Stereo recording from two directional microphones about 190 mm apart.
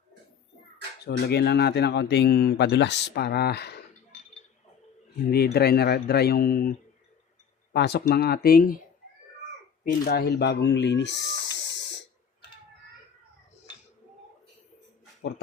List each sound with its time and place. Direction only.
1.0 s speech: 60° left (ahead or behind)
5.3 s speech: 55° left (ahead or behind)
9.8 s speech: 55° left (ahead or behind)